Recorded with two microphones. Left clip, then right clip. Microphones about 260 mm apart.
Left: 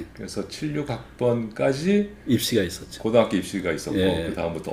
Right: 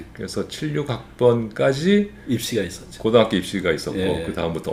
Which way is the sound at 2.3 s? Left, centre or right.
Left.